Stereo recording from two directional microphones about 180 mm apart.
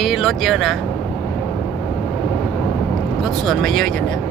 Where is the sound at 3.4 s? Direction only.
Centre (ahead or behind).